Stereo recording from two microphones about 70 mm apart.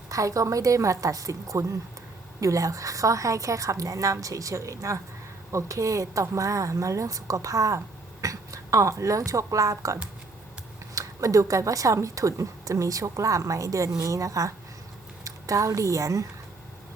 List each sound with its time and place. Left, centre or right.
0.1 s a woman's voice: right